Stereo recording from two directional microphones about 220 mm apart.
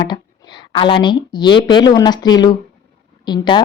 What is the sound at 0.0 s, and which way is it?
A woman's voice, 20° left (ahead or behind).